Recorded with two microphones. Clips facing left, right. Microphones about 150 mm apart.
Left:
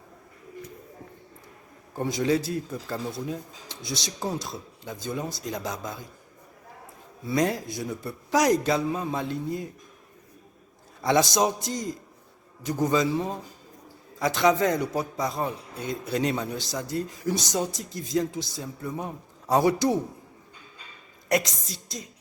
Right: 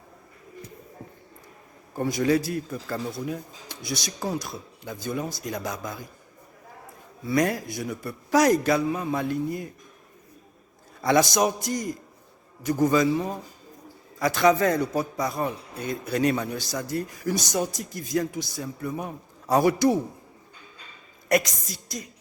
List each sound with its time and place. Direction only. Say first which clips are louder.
2.0 s a man's voice: right 2 dB; 20° left (ahead or behind)
3.7 s a man's voice: right 2 dB; 25° left (ahead or behind)
7.3 s a man's voice: right 1 dB; 25° left (ahead or behind)
11.0 s a man's voice: right 1 dB; 20° left (ahead or behind)
21.2 s a woman's voice: right 2 dB; 20° left (ahead or behind)